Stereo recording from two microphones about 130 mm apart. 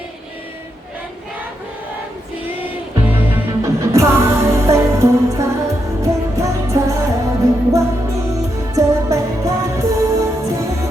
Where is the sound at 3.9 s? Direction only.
25° right (ahead or behind).